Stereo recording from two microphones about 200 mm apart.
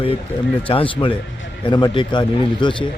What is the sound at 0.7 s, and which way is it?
Speech, 25° left (ahead or behind).